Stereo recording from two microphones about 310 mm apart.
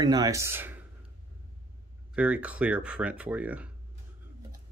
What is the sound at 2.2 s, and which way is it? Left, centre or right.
Speech, centre.